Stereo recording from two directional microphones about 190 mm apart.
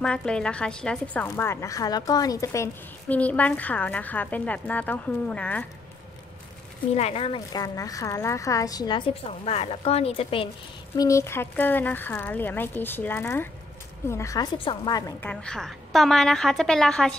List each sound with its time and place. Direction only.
0.0 s a woman's voice: 5° left (ahead or behind)
6.9 s speech: 35° left (ahead or behind)
11.0 s a woman's voice: 15° left (ahead or behind)
15.1 s a woman's voice: 5° left (ahead or behind)